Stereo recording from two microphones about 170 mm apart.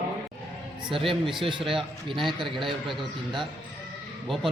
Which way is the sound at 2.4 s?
Centre (ahead or behind).